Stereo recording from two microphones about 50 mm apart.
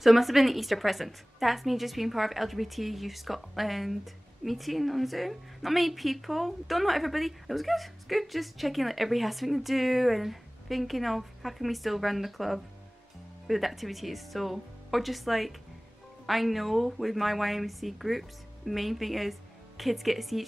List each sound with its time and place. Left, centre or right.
0.0 s a woman's voice: centre